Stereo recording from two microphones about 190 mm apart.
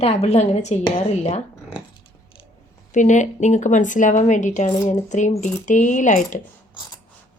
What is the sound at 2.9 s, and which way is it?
A woman's voice, 40° left (ahead or behind).